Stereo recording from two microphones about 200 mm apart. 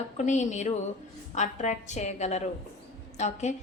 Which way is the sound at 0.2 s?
35° left (ahead or behind).